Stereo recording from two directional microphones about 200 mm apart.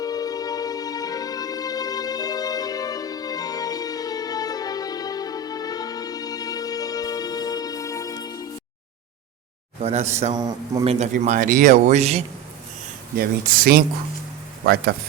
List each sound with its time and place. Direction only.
0.0 s music: 20° left (ahead or behind)
9.8 s speech: 35° right (ahead or behind)
10.3 s speech: 20° right (ahead or behind)
10.9 s speech: 35° right (ahead or behind)
13.1 s speech: 45° right (ahead or behind)